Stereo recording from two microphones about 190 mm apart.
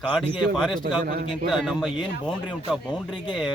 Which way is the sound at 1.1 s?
50° right (ahead or behind).